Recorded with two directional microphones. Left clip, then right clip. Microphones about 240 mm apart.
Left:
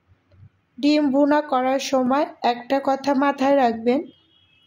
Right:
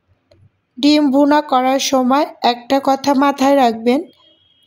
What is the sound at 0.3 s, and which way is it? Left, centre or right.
Speech, right.